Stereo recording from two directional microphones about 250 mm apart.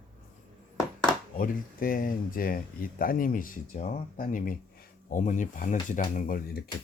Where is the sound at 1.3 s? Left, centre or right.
Left.